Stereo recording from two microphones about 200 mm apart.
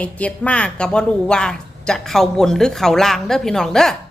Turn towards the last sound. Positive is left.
turn(degrees=0)  # may be behind; listen again after turning